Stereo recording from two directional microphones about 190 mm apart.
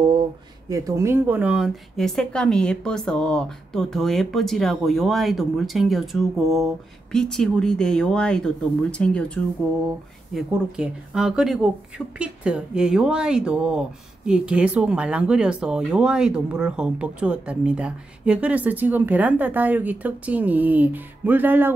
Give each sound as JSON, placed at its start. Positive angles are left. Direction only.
{"t": 0.7, "sound": "speech", "side_deg": -15}